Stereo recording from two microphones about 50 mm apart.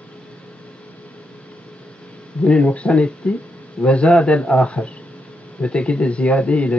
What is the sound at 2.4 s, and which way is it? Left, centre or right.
Speech, left.